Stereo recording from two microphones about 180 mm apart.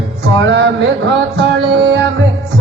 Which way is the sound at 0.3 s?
85° right.